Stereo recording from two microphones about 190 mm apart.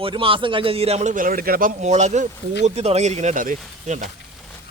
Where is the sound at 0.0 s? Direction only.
30° right (ahead or behind).